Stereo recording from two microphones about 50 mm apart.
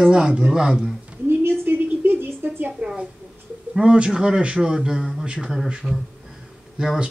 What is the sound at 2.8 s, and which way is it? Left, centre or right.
Speech, right.